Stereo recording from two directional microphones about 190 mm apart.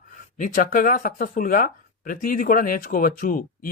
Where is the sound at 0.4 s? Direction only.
45° left (ahead or behind).